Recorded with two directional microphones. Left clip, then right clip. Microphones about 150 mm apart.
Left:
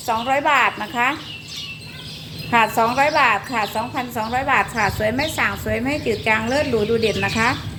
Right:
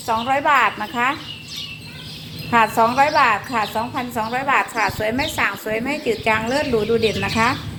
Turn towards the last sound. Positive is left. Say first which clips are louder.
# even
turn(degrees=15)  # may be behind; listen again after turning